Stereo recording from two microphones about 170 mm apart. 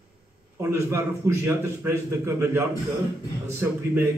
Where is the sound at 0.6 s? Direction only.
15° right (ahead or behind).